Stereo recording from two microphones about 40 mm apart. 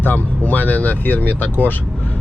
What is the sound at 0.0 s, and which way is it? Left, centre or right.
Speech, left.